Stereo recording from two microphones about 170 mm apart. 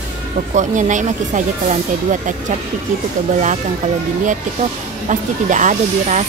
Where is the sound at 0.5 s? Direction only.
45° right (ahead or behind).